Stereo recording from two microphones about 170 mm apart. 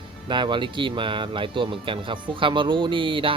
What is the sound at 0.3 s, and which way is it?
Speech, 25° right (ahead or behind).